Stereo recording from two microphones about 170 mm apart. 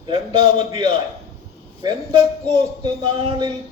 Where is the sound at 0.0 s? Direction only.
30° right (ahead or behind).